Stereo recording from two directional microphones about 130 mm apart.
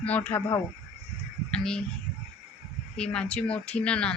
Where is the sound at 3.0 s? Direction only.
5° left (ahead or behind).